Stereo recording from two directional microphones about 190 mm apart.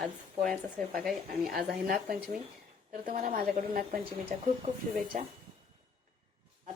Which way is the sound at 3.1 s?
50° right (ahead or behind).